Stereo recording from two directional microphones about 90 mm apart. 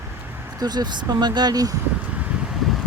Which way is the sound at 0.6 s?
50° right (ahead or behind).